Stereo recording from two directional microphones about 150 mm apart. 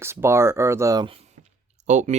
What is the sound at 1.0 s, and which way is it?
Speech, 40° right (ahead or behind).